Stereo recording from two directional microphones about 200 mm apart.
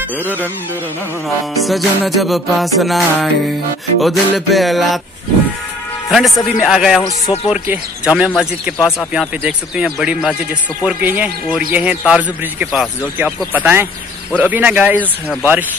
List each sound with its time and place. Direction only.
1.5 s speech: centre (ahead or behind)
6.0 s a man's voice: centre (ahead or behind)
7.0 s speech: 15° left (ahead or behind)
7.4 s speech: 5° right (ahead or behind)